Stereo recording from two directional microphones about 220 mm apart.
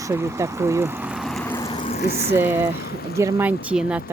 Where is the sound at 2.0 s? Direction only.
50° left (ahead or behind).